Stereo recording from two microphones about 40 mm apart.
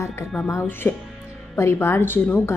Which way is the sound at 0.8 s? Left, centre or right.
Left.